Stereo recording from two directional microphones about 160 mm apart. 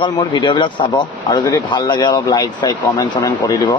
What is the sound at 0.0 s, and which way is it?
Speech, 30° left (ahead or behind).